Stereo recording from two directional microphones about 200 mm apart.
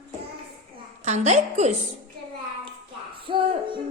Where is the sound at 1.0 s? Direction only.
35° right (ahead or behind).